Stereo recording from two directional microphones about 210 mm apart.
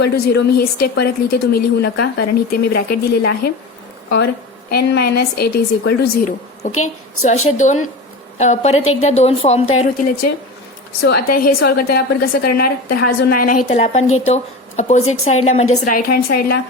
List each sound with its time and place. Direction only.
0.0 s a woman's voice: 50° left (ahead or behind)
4.7 s a woman's voice: 50° left (ahead or behind)
7.4 s a woman's voice: 35° left (ahead or behind)
11.0 s a woman's voice: 45° left (ahead or behind)
13.7 s a woman's voice: 30° left (ahead or behind); by 16.6 s 45° left (ahead or behind)